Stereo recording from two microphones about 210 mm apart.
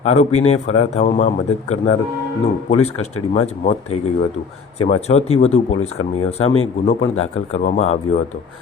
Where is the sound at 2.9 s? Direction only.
90° left.